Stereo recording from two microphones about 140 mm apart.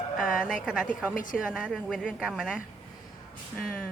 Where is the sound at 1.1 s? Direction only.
70° left (ahead or behind).